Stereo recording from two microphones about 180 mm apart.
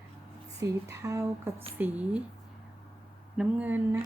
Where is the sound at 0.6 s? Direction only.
15° right (ahead or behind).